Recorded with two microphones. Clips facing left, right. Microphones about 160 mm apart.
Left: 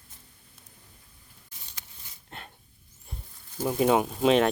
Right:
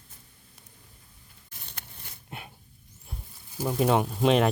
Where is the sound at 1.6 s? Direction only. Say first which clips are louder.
Right 5 dB; 60° right (ahead or behind).